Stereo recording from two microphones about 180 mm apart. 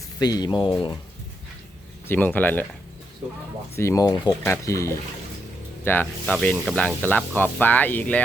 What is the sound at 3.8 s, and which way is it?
Speech, 15° left (ahead or behind).